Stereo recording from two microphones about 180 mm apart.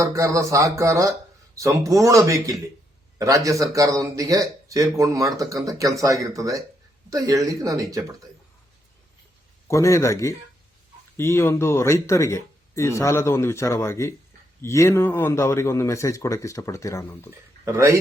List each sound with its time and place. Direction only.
0.0 s speech: 15° right (ahead or behind)
9.6 s speech: 15° left (ahead or behind)
17.7 s speech: 15° right (ahead or behind)